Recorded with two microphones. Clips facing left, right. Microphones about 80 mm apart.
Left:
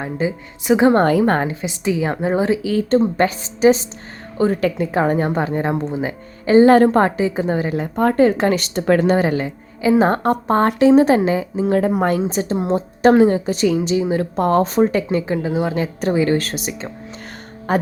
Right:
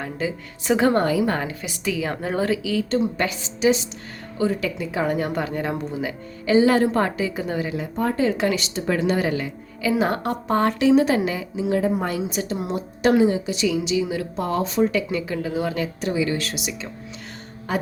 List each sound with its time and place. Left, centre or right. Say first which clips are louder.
0.0 s a woman's voice: left 5 dB; left
1.0 s speech: left 6 dB; left
1.5 s a woman's voice: left 6 dB; left
2.6 s a woman's voice: left 6 dB; left
7.0 s a woman's voice: left 6 dB; left
7.7 s speech: left 6 dB; left
9.1 s a woman's voice: left 5 dB; left
11.6 s a woman's voice: left 4 dB; left
16.0 s speech: left 9 dB; left